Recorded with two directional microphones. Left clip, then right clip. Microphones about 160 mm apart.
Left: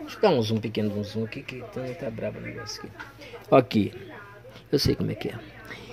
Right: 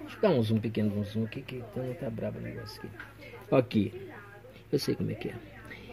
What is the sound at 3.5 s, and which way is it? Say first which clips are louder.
Speech: left 7 dB; 20° left (ahead or behind).